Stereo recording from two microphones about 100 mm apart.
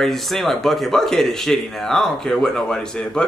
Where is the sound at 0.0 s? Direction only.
Centre (ahead or behind).